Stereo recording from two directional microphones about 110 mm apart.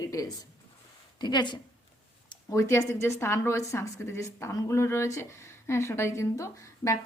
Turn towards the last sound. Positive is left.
turn(degrees=25)  # may be behind; listen again after turning